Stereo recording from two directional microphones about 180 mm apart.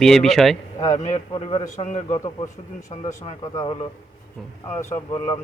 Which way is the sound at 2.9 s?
30° left (ahead or behind).